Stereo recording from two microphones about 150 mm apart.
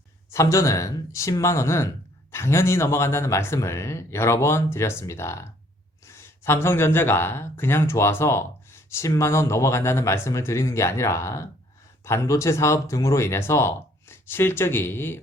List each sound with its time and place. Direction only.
0.3 s speech: 20° left (ahead or behind)